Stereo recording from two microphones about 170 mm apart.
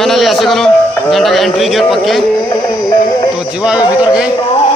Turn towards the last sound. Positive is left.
turn(degrees=25)  # may be behind; listen again after turning